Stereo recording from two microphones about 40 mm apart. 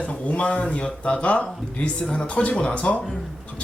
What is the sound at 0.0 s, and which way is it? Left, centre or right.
Speech, left.